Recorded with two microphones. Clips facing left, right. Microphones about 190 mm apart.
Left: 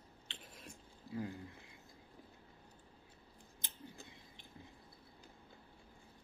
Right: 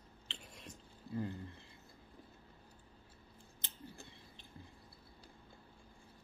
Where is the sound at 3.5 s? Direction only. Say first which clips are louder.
Right 1 dB; 15° left (ahead or behind).